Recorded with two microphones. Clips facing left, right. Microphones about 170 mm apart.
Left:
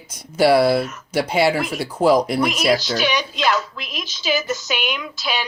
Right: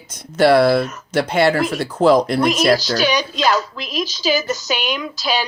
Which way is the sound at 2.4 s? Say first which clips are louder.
Right 3 dB; 35° right (ahead or behind).